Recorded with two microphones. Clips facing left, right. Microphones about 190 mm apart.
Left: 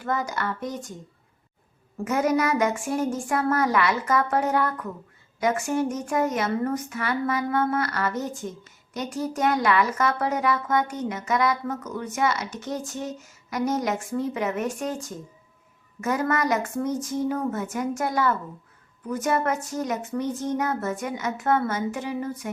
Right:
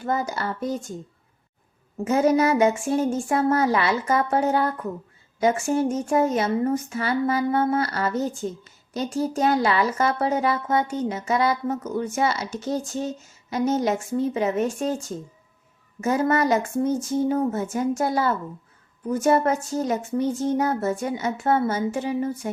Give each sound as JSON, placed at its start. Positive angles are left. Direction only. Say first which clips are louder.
{"t": 0.0, "sound": "speech", "louder": "right 2 dB", "side_deg": -30}
{"t": 2.0, "sound": "speech", "louder": "right 4 dB", "side_deg": -25}